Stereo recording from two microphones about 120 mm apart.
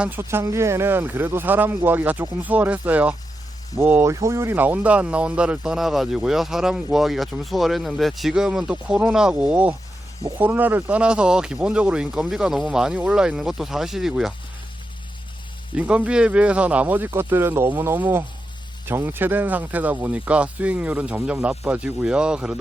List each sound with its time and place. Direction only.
0.0 s speech: 20° right (ahead or behind); by 14.3 s 5° right (ahead or behind)
15.7 s speech: 10° right (ahead or behind)